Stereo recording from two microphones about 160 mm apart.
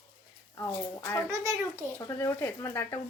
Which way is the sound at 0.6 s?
20° left (ahead or behind).